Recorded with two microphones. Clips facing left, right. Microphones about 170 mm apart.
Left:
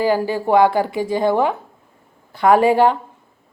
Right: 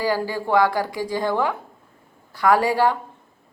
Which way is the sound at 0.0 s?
20° left (ahead or behind).